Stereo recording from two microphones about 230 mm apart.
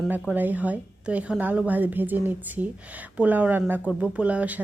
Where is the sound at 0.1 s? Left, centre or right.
Centre.